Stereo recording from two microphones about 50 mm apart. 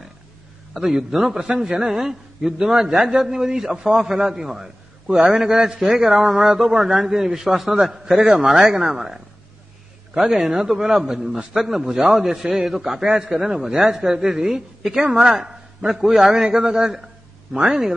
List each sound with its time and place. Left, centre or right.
0.7 s a man's voice: centre
16.0 s a man's voice: centre
16.5 s a man's voice: centre